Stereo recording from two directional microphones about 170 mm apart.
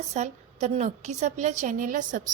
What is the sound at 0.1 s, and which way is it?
A woman's voice, 40° right (ahead or behind).